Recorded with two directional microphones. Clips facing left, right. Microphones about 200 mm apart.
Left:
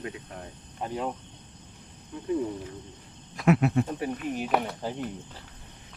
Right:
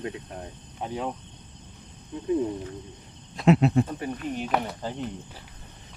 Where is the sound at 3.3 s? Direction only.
25° right (ahead or behind).